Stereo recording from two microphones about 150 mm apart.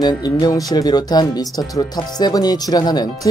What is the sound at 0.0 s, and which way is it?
Speech, 25° left (ahead or behind).